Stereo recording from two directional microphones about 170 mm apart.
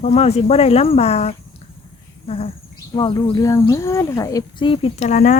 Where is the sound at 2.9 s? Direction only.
20° left (ahead or behind).